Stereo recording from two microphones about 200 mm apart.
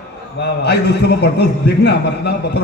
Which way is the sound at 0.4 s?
55° left (ahead or behind).